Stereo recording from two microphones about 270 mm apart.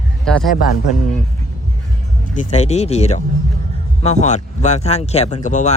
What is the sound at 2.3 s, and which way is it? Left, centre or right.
Speech, left.